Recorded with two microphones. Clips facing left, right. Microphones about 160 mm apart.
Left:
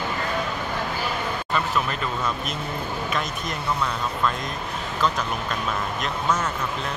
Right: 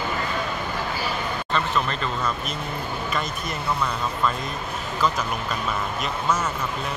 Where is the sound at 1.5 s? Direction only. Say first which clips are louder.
Right 1 dB; 5° left (ahead or behind).